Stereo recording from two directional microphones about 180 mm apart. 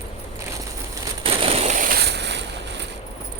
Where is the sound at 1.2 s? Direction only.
35° right (ahead or behind); by 2.8 s 70° right (ahead or behind).